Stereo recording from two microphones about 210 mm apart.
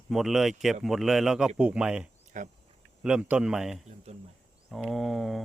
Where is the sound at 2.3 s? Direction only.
35° right (ahead or behind).